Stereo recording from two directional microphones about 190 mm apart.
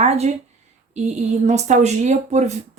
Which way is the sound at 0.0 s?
35° right (ahead or behind).